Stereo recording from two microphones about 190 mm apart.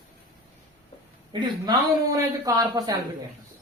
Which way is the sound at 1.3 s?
20° right (ahead or behind).